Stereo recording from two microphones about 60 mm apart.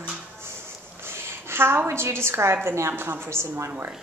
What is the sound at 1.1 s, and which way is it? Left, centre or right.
A woman's voice, right.